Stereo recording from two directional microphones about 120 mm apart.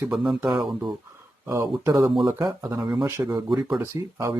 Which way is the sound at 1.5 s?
25° right (ahead or behind).